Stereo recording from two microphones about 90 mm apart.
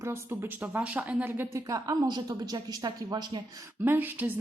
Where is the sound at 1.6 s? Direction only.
40° right (ahead or behind).